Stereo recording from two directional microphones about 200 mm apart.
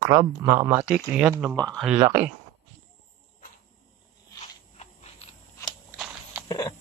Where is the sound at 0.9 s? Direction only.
5° right (ahead or behind).